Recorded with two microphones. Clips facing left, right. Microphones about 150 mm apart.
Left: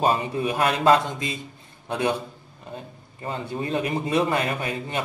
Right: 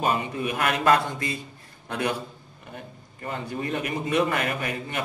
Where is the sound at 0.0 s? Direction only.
30° left (ahead or behind).